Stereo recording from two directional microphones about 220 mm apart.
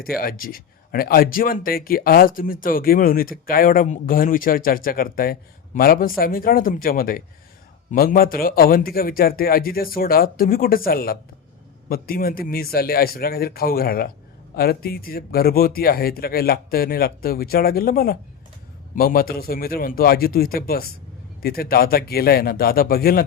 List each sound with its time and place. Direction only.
0.2 s speech: 40° left (ahead or behind)